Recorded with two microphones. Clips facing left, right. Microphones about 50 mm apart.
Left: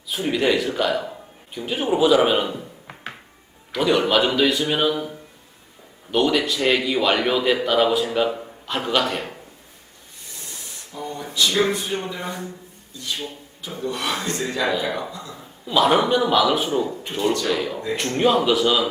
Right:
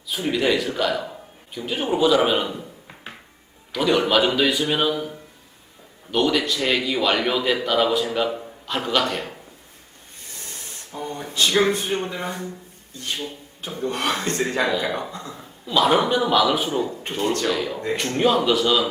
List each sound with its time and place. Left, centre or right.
0.1 s a man's voice: centre
3.7 s a man's voice: centre
10.4 s spray: right
11.3 s speech: right
15.6 s a man's voice: centre